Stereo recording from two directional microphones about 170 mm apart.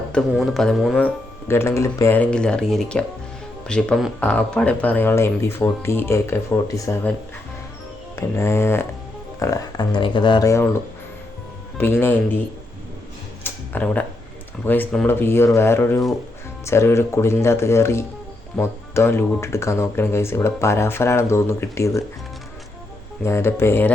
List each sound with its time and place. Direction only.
0.1 s speech: 5° left (ahead or behind)
8.1 s speech: 15° left (ahead or behind)
11.8 s speech: 15° left (ahead or behind)
13.4 s music: 10° left (ahead or behind)
14.6 s speech: 10° left (ahead or behind)
23.2 s speech: 15° left (ahead or behind)